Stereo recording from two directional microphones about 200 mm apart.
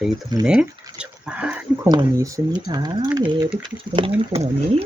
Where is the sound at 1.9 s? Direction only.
20° right (ahead or behind).